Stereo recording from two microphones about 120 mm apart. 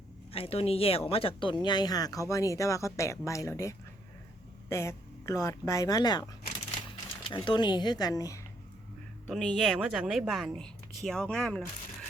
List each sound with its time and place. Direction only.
0.3 s speech: 55° left (ahead or behind); by 6.2 s 35° left (ahead or behind)
6.9 s speech: 45° left (ahead or behind); by 8.4 s 30° left (ahead or behind)
9.2 s speech: 5° left (ahead or behind)